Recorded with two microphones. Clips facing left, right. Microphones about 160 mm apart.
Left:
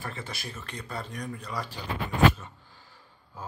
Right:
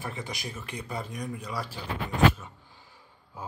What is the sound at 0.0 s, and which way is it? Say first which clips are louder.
Speech: right 2 dB; 15° right (ahead or behind).